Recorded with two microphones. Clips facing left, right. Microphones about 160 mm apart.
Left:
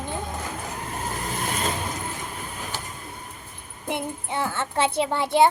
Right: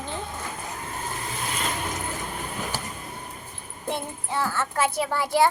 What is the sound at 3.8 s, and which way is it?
A child's voice, 20° left (ahead or behind).